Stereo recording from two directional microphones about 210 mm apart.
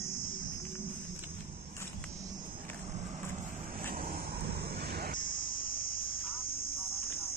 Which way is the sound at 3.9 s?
45° right (ahead or behind).